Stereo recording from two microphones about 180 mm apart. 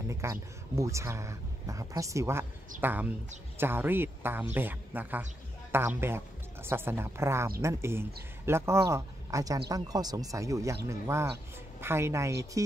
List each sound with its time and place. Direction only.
0.1 s speech: 15° right (ahead or behind)